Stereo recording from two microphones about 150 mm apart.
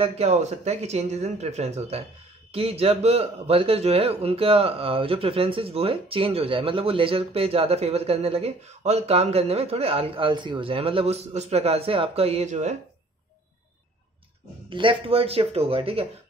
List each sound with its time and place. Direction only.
0.0 s a man's voice: 45° right (ahead or behind)
14.7 s a man's voice: 35° right (ahead or behind)